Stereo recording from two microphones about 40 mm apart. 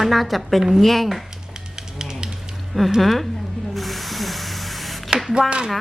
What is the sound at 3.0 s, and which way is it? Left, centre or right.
Speech, centre.